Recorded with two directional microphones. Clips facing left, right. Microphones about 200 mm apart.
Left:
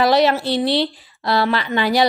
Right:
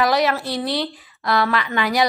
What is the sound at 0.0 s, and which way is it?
Speech, 30° left (ahead or behind).